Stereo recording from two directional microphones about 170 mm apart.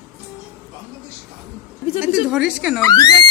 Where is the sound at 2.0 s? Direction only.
5° right (ahead or behind).